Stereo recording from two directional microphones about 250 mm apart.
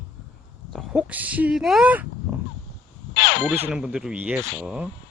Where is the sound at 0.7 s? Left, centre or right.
Centre.